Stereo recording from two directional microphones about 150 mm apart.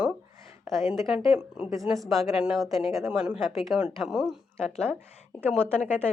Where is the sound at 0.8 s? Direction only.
20° right (ahead or behind).